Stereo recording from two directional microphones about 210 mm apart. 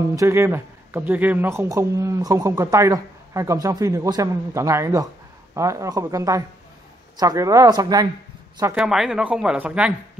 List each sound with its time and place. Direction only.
0.1 s speech: 15° right (ahead or behind)
8.7 s speech: 5° right (ahead or behind)